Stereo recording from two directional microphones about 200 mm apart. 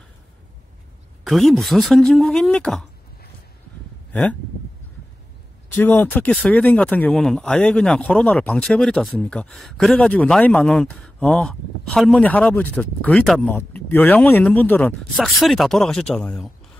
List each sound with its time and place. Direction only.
1.2 s speech: centre (ahead or behind)
4.1 s speech: 5° left (ahead or behind)
5.8 s speech: 10° left (ahead or behind)